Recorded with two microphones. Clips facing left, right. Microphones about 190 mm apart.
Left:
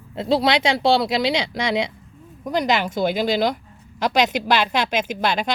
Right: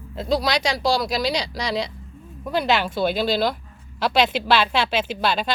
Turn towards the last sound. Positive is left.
turn(degrees=15)  # may be behind; listen again after turning